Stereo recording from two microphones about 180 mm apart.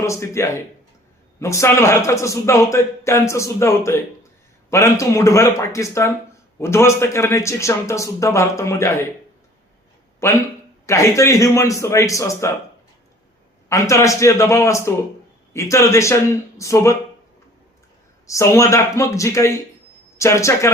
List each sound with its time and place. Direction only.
0.0 s a man's voice: 15° left (ahead or behind)
10.2 s a man's voice: 15° left (ahead or behind)
13.7 s a man's voice: 15° left (ahead or behind)
18.3 s a man's voice: 15° left (ahead or behind)